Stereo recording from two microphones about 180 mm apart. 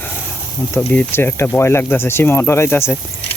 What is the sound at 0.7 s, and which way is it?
Speech, 10° left (ahead or behind).